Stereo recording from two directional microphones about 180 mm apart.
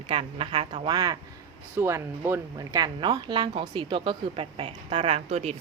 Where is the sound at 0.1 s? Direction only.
30° right (ahead or behind).